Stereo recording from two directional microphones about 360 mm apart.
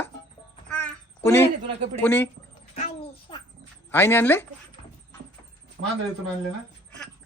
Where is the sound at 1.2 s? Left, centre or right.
Centre.